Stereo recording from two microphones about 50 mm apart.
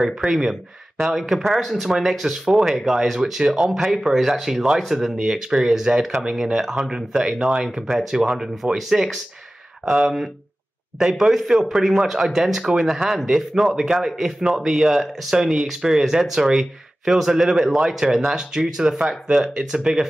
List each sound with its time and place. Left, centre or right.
0.3 s speech: centre
3.6 s speech: centre